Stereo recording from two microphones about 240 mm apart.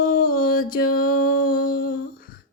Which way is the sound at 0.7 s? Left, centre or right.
Left.